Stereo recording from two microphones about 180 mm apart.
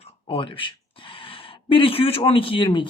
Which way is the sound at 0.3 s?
30° left (ahead or behind).